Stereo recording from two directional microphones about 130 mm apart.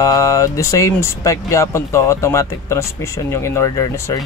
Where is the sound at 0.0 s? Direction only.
25° left (ahead or behind).